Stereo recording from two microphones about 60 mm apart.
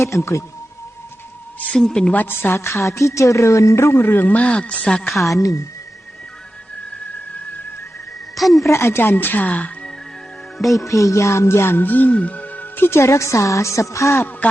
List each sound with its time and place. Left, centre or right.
0.0 s music: left
1.7 s a woman's voice: centre
2.1 s a woman's voice: left; by 5.1 s centre
5.3 s speech: left
8.4 s speech: centre
8.6 s a woman's voice: left
10.8 s music: left
11.6 s a woman's voice: left